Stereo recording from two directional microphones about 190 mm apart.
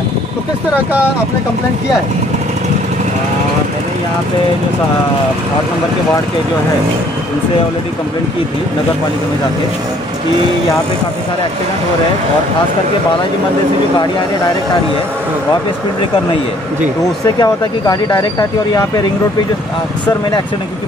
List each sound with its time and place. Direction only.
17.4 s speech: 20° left (ahead or behind)